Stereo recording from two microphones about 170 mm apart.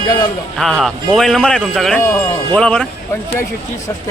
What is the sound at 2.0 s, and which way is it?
Speech, 15° left (ahead or behind).